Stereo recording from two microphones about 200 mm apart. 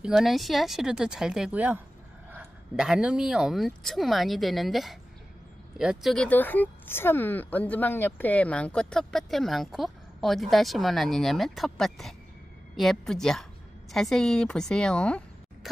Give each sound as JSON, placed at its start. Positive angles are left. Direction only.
{"t": 0.0, "sound": "speech", "side_deg": 0}